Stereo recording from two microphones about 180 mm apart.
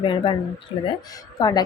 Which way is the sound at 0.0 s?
25° left (ahead or behind).